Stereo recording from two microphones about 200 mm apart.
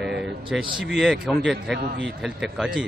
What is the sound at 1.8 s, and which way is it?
Speech, 65° right (ahead or behind).